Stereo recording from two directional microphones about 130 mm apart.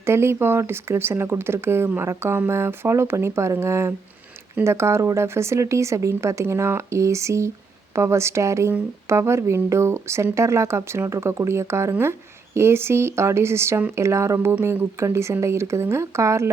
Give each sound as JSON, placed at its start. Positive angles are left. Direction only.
{"t": 0.0, "sound": "speech", "side_deg": -20}